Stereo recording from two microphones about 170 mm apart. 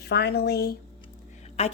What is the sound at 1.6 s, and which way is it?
Speech, 40° left (ahead or behind).